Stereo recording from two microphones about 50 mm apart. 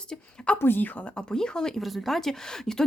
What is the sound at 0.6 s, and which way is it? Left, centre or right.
Speech, left.